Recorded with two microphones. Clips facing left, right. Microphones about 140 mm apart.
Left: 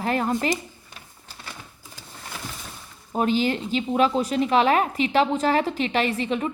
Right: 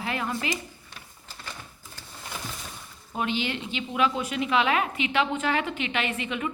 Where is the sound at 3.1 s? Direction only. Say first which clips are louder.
Left 7 dB; 40° left (ahead or behind).